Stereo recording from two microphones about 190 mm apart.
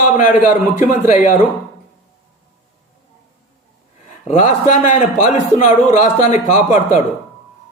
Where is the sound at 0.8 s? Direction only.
40° left (ahead or behind).